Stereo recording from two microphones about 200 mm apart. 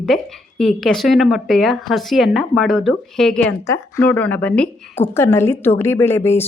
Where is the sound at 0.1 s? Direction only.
Centre (ahead or behind).